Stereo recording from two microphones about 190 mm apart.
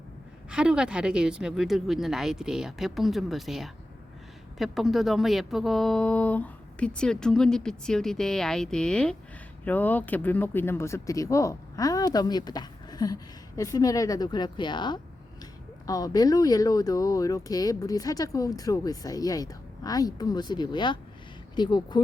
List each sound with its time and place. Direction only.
0.5 s speech: 5° right (ahead or behind); by 22.0 s 20° left (ahead or behind)